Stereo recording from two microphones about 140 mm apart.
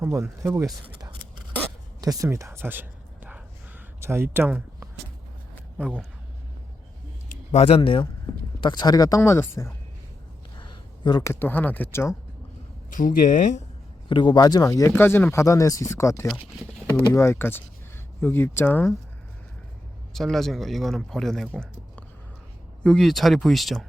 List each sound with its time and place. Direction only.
0.0 s speech: 15° right (ahead or behind)
2.0 s speech: 25° right (ahead or behind)
3.2 s a sound: 10° right (ahead or behind)
7.5 s speech: 50° left (ahead or behind)
7.8 s speech: 40° left (ahead or behind); by 9.7 s 20° left (ahead or behind)
10.6 s a sound: 35° left (ahead or behind)
11.2 s speech: 20° left (ahead or behind)
12.9 s speech: 75° left (ahead or behind)
14.1 s speech: 35° left (ahead or behind); by 18.9 s 15° left (ahead or behind)
20.1 s speech: centre (ahead or behind)
21.5 s a sound: 10° left (ahead or behind)
22.8 s speech: 5° left (ahead or behind)